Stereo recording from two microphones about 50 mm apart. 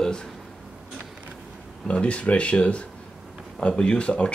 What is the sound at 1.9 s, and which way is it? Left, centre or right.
A man's voice, left.